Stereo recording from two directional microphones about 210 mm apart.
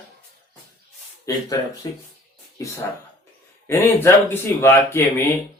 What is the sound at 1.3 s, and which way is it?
Speech, 15° left (ahead or behind).